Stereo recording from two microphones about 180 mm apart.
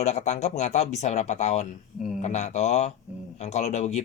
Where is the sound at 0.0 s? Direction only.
40° left (ahead or behind).